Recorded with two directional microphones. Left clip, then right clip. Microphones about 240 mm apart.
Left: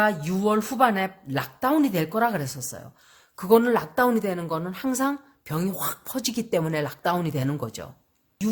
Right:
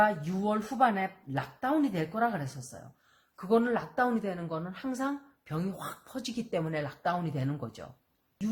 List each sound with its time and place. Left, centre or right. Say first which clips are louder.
0.0 s speech: left 4 dB; left